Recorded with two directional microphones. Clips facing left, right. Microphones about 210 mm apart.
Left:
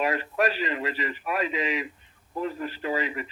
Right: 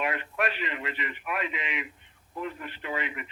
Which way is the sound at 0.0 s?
35° left (ahead or behind).